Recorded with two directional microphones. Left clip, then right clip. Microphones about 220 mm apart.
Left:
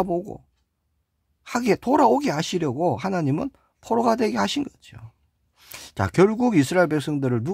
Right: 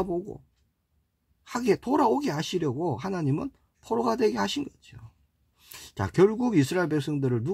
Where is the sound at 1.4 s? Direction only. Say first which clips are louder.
Left 4 dB; 30° left (ahead or behind).